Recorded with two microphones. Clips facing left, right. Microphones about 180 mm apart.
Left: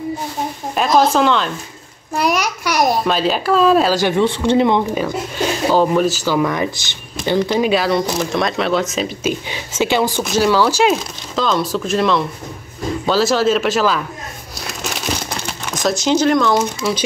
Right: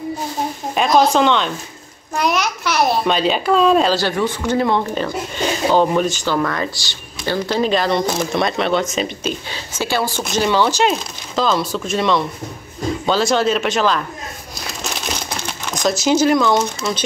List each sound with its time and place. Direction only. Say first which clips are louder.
0.7 s a child's voice: even; centre (ahead or behind)
3.1 s speech: even; centre (ahead or behind)
3.9 s speech: left 3 dB; 15° left (ahead or behind)
5.7 s speech: left 1 dB; 5° left (ahead or behind)
9.5 s speech: left 4 dB; 15° left (ahead or behind)
10.2 s speech: even; 5° left (ahead or behind)
15.6 s speech: even; 5° left (ahead or behind)